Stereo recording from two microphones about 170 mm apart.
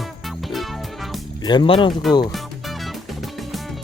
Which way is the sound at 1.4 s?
25° left (ahead or behind).